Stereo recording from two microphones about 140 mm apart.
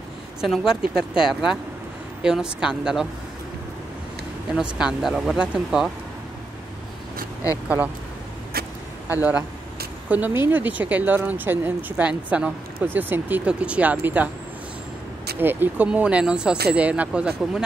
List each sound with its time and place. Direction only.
0.4 s a woman's voice: 5° right (ahead or behind)
4.7 s a woman's voice: 5° right (ahead or behind)
7.6 s speech: 10° right (ahead or behind)
8.5 s vehicle: 90° right
9.1 s speech: 10° right (ahead or behind)
15.3 s speech: 15° right (ahead or behind)